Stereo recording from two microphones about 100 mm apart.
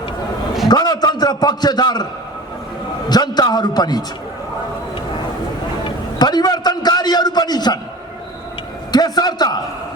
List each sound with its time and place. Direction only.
0.7 s a sound: 45° left (ahead or behind)
3.1 s a man's voice: 45° left (ahead or behind)
5.8 s a man's voice: 45° left (ahead or behind)
8.9 s a man's voice: 45° left (ahead or behind)